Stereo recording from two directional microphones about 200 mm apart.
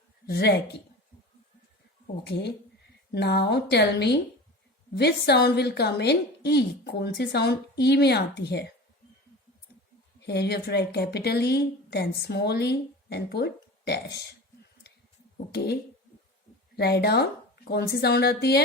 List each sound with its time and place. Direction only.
0.3 s a woman's voice: 55° left (ahead or behind)
2.2 s a woman's voice: 55° left (ahead or behind)
10.2 s a woman's voice: 55° left (ahead or behind)
15.5 s a woman's voice: 55° left (ahead or behind)